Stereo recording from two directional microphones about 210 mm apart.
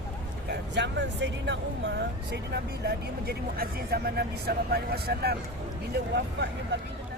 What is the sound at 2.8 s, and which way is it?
Speech, 45° right (ahead or behind).